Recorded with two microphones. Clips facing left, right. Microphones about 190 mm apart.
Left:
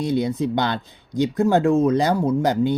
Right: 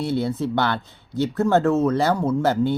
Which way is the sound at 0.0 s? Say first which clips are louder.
Left 2 dB; 15° left (ahead or behind).